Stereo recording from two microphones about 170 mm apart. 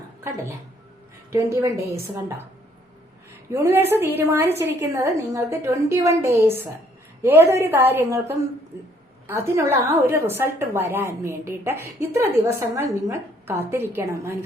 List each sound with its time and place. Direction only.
1.3 s a woman's voice: 20° right (ahead or behind)
3.5 s a woman's voice: 15° right (ahead or behind)